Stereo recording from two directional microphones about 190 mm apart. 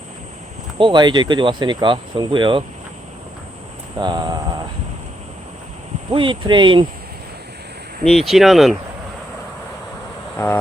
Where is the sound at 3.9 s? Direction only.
20° right (ahead or behind).